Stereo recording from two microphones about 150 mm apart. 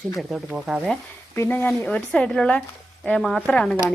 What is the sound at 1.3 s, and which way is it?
Speech, 15° left (ahead or behind).